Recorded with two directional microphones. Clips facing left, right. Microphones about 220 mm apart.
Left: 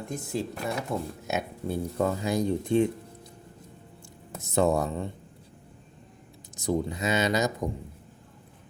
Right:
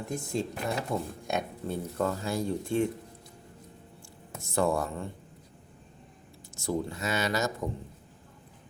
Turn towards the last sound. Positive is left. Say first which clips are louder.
# left 4 dB
turn(degrees=20)  # may be behind; listen again after turning